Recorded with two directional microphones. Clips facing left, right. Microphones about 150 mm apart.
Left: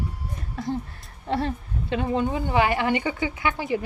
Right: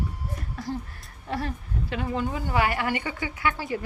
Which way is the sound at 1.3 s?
30° left (ahead or behind).